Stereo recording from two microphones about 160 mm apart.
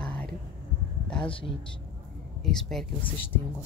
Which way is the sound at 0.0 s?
10° left (ahead or behind).